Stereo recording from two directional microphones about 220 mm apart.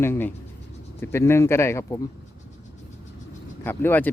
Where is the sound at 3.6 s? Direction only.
10° left (ahead or behind).